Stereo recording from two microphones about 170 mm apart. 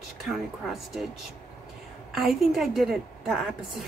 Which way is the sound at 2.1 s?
Centre (ahead or behind).